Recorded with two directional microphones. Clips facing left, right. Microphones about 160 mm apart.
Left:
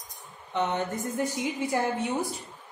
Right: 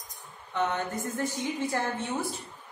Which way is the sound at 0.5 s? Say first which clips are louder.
Left 1 dB; 20° left (ahead or behind).